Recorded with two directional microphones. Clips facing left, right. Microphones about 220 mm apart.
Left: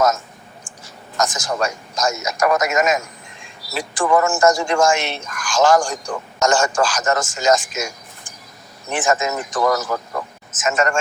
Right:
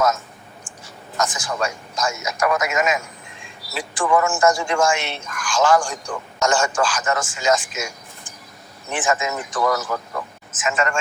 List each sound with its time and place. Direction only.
1.2 s speech: 40° left (ahead or behind)
8.9 s a man's voice: 40° left (ahead or behind)